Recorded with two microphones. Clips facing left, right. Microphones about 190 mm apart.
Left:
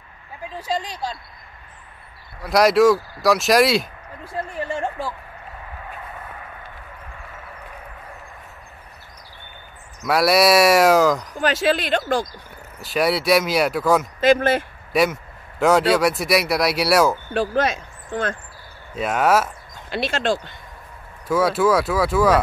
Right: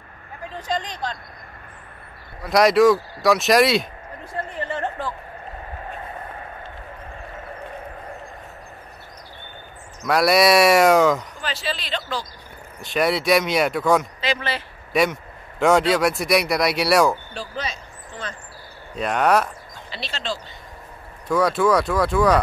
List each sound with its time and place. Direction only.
0.6 s speech: 10° left (ahead or behind)
2.4 s speech: centre (ahead or behind)
4.6 s a sound: 10° left (ahead or behind)
10.0 s speech: centre (ahead or behind)
11.4 s speech: 50° left (ahead or behind)
12.8 s speech: centre (ahead or behind)
14.2 s speech: 50° left (ahead or behind)
14.9 s speech: centre (ahead or behind)
17.3 s speech: 55° left (ahead or behind)
18.9 s speech: 5° left (ahead or behind)
19.9 s speech: 50° left (ahead or behind)
21.3 s speech: 5° left (ahead or behind)